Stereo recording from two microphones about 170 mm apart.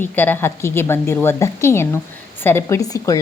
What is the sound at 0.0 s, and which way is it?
A woman's voice, 10° left (ahead or behind).